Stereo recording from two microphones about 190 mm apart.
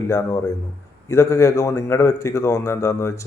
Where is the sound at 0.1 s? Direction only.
15° left (ahead or behind).